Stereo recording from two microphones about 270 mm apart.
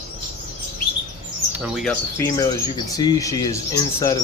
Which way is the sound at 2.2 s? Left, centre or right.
Centre.